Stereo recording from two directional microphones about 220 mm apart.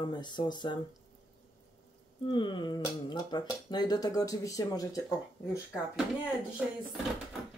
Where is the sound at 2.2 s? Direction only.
20° left (ahead or behind).